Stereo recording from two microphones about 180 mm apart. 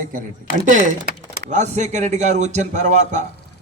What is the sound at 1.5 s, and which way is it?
A man's voice, 40° right (ahead or behind).